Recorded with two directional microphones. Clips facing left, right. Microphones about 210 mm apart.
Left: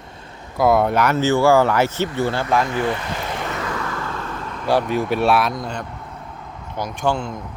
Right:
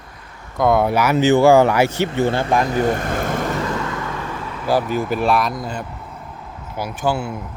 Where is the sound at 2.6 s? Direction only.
40° right (ahead or behind).